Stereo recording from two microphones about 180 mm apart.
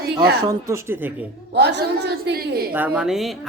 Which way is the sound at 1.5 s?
70° right (ahead or behind).